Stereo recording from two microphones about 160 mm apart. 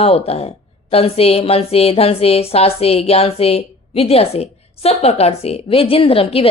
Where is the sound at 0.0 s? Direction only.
40° left (ahead or behind).